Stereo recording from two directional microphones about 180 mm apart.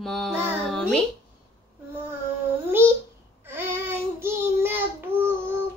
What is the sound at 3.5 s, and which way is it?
Child singing, 10° right (ahead or behind).